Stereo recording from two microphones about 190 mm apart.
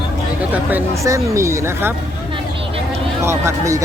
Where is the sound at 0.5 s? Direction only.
10° right (ahead or behind).